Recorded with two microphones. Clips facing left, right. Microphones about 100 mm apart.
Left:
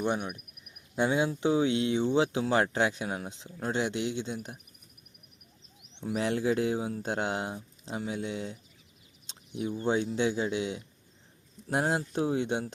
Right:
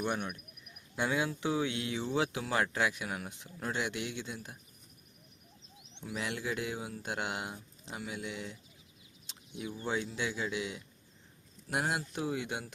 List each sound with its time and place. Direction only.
0.0 s speech: 15° left (ahead or behind)
6.0 s speech: 30° left (ahead or behind)